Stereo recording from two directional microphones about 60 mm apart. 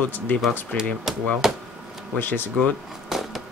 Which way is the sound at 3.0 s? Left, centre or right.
Centre.